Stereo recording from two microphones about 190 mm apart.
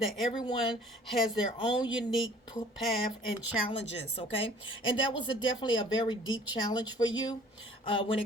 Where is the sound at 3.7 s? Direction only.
30° left (ahead or behind).